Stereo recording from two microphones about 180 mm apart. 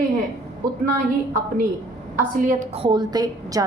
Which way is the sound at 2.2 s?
50° right (ahead or behind).